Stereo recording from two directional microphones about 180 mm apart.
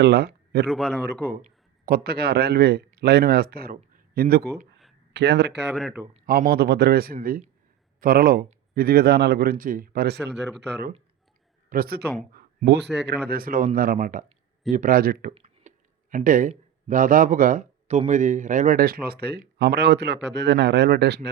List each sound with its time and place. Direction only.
0.0 s a man's voice: 65° right (ahead or behind)
0.7 s a man's voice: centre (ahead or behind)
1.2 s a man's voice: 50° right (ahead or behind); by 5.7 s 70° right (ahead or behind)
5.7 s a man's voice: centre (ahead or behind)
6.2 s a man's voice: 55° right (ahead or behind)
11.7 s a man's voice: 55° right (ahead or behind)
12.3 s a sound: 60° right (ahead or behind)
13.2 s speech: 55° right (ahead or behind)
15.4 s a sound: 40° right (ahead or behind)
16.9 s speech: 50° right (ahead or behind); by 21.2 s 65° right (ahead or behind)